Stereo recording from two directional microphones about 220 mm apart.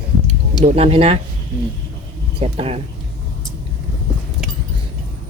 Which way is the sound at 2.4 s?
25° right (ahead or behind).